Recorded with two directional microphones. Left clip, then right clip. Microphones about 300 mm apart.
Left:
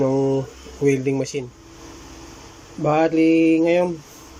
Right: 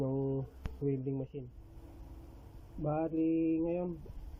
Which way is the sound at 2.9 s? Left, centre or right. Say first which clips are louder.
Left 17 dB; left.